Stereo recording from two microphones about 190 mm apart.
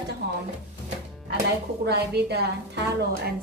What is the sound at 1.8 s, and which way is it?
A woman's voice, 60° right (ahead or behind).